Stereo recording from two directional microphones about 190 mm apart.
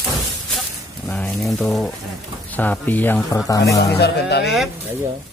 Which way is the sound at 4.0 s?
60° left (ahead or behind).